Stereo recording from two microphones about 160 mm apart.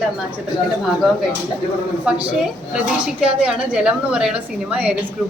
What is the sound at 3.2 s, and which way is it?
A woman's voice, 5° right (ahead or behind).